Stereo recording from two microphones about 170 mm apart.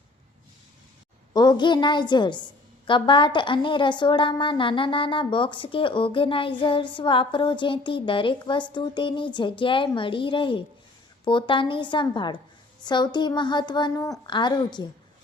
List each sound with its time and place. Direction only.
1.3 s a woman's voice: 25° left (ahead or behind)